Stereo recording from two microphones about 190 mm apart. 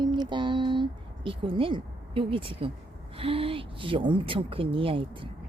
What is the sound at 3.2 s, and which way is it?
Speech, 30° right (ahead or behind).